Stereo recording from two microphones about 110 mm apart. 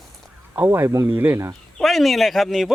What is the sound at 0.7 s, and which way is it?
Speech, 25° right (ahead or behind).